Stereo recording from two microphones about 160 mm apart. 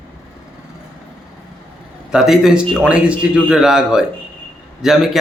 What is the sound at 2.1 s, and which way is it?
Speech, centre (ahead or behind).